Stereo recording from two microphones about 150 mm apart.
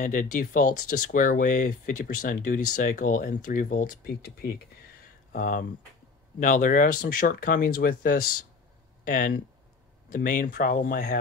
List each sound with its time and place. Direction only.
0.0 s speech: 60° left (ahead or behind); by 4.6 s 90° left
5.3 s speech: 65° left (ahead or behind)